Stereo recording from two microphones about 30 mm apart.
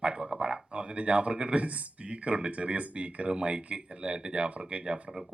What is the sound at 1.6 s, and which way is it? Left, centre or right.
Speech, right.